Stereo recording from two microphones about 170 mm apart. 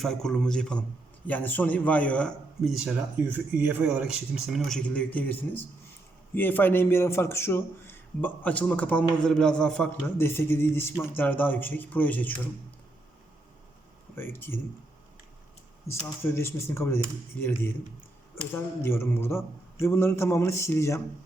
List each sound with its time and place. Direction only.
0.0 s a man's voice: centre (ahead or behind)
14.2 s a man's voice: 15° left (ahead or behind)
16.4 s a man's voice: 15° left (ahead or behind)